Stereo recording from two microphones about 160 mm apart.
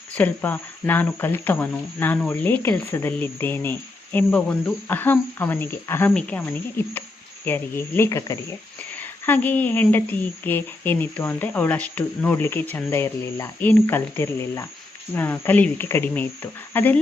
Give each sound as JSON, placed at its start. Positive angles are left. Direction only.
{"t": 0.1, "sound": "speech", "side_deg": 10}